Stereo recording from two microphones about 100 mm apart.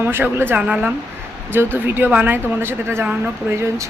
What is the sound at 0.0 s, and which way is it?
Speech, 20° right (ahead or behind).